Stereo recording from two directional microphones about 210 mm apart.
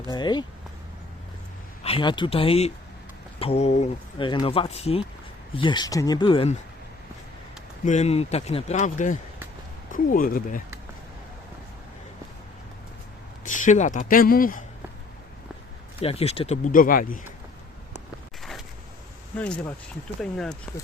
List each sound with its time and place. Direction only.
0.1 s speech: 20° left (ahead or behind)
1.8 s speech: 25° left (ahead or behind)
7.9 s a man's voice: 35° left (ahead or behind)
13.4 s a man's voice: 35° left (ahead or behind)
16.0 s a man's voice: 30° left (ahead or behind)
19.4 s speech: 5° left (ahead or behind)